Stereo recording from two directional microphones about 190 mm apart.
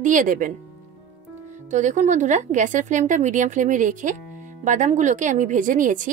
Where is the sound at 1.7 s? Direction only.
40° right (ahead or behind).